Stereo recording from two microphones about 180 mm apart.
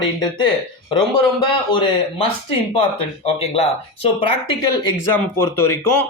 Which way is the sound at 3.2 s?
35° left (ahead or behind).